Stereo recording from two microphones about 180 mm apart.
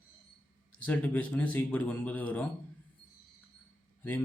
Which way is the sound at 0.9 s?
10° left (ahead or behind).